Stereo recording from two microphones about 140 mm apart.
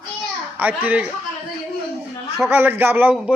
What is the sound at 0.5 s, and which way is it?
Speech, 10° right (ahead or behind).